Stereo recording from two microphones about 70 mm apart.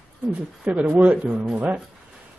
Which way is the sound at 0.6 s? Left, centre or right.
Right.